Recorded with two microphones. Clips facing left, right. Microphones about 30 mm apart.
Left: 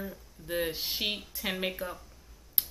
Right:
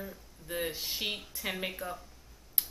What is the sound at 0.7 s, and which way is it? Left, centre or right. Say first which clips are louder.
Speech: left 3 dB; left.